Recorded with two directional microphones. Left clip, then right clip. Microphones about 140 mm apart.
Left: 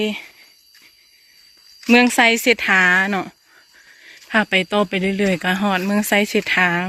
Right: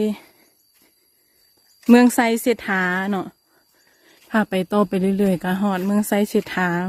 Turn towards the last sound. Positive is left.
turn(degrees=-30)  # may be behind; listen again after turning